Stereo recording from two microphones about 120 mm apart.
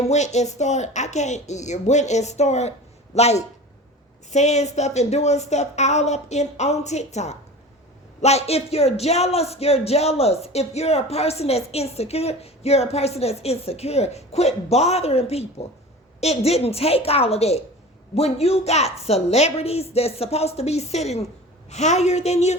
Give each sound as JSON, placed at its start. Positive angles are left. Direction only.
{"t": 0.0, "sound": "speech", "side_deg": 70}